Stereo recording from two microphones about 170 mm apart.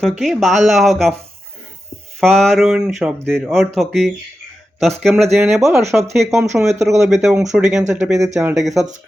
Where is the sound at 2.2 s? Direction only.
Centre (ahead or behind).